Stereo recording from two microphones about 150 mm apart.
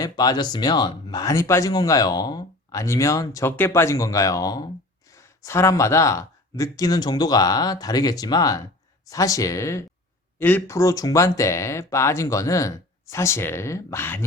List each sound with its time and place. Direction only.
0.0 s speech: 25° left (ahead or behind)